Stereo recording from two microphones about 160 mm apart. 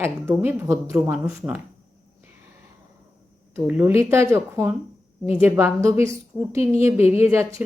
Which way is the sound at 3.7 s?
10° right (ahead or behind).